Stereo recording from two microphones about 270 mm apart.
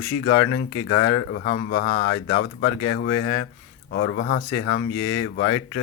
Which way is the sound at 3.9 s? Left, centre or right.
Left.